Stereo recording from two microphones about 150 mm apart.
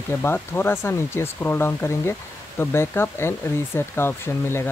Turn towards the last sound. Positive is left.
turn(degrees=15)  # may be behind; listen again after turning